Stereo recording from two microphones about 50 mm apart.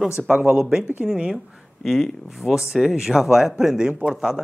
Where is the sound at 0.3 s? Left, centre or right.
Centre.